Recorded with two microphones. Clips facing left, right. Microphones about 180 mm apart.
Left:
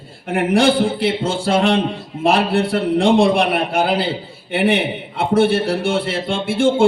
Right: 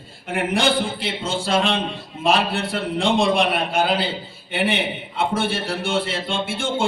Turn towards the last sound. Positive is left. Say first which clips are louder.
# left 8 dB
turn(degrees=60)  # may be behind; listen again after turning